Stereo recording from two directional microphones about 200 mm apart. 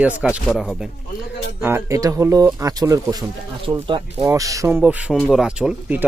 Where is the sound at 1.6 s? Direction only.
15° right (ahead or behind).